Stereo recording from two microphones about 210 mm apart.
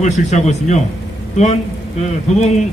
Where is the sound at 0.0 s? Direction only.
35° left (ahead or behind).